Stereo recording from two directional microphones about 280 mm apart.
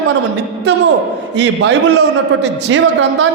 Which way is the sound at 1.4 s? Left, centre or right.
Right.